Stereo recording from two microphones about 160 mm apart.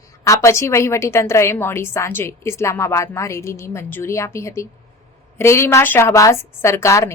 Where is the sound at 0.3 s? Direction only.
20° left (ahead or behind).